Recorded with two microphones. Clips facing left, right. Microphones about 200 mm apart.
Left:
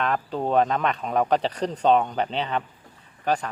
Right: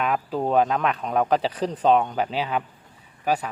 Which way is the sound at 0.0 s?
5° right (ahead or behind).